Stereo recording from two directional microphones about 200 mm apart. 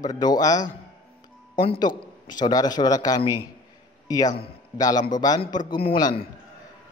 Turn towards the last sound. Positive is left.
turn(degrees=25)  # may be behind; listen again after turning